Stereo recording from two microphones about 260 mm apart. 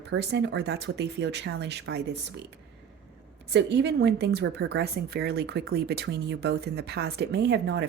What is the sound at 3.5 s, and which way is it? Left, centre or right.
Speech, right.